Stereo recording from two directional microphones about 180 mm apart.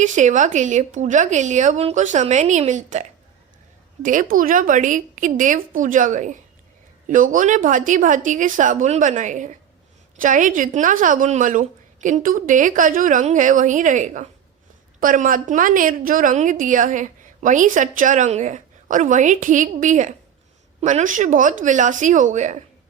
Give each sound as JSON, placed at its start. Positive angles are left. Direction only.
{"t": 0.0, "sound": "a woman's voice", "side_deg": -45}